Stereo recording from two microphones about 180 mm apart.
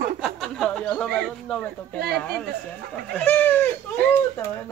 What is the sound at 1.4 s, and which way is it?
Speech, 5° left (ahead or behind).